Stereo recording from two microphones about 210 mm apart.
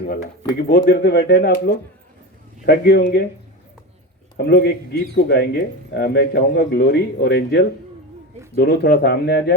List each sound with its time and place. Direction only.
0.7 s a man's voice: 50° left (ahead or behind)
4.4 s a man's voice: 50° left (ahead or behind)